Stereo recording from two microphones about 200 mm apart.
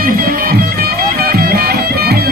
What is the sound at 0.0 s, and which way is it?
Music, 45° right (ahead or behind).